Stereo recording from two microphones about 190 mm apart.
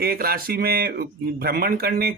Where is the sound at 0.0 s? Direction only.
50° right (ahead or behind).